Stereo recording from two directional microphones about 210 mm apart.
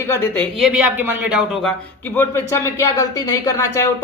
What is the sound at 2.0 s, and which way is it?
A man's voice, 10° left (ahead or behind).